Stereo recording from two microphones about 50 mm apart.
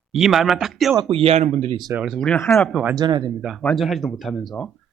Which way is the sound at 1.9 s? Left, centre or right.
Right.